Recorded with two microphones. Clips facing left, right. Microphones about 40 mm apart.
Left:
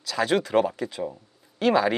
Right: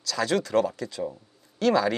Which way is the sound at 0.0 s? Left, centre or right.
Centre.